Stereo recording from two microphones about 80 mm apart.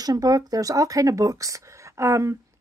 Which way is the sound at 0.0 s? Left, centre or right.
Right.